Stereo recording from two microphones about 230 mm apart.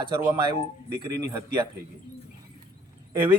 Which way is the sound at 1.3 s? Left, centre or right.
Centre.